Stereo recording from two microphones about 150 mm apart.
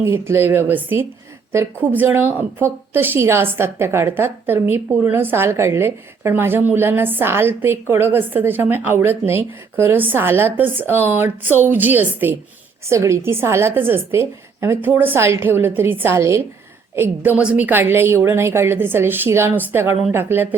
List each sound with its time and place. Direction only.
0.0 s a woman's voice: 15° right (ahead or behind)